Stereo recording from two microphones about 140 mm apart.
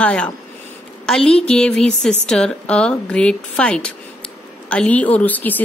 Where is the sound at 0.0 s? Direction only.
10° left (ahead or behind).